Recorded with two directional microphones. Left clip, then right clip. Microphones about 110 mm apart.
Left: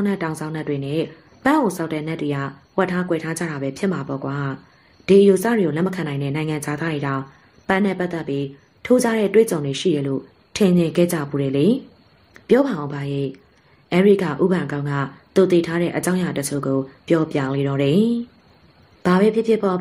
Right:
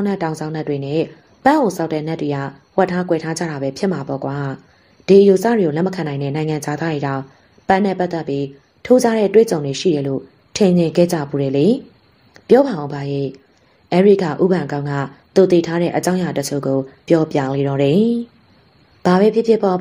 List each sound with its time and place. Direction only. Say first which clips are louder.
0.0 s speech: right 3 dB; 20° right (ahead or behind)